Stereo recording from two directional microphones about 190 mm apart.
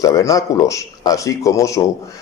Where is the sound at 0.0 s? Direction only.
20° left (ahead or behind).